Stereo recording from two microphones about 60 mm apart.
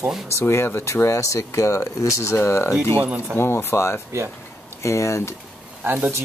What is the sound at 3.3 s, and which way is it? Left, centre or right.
Speech, left.